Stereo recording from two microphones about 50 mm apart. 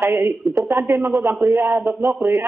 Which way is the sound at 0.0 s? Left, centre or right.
Right.